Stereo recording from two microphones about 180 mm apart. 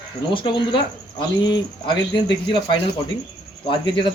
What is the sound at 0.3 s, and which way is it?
Speech, 25° left (ahead or behind).